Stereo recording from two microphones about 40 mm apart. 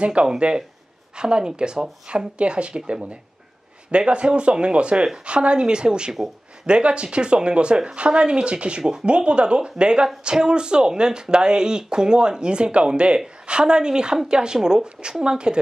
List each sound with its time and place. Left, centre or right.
0.0 s speech: right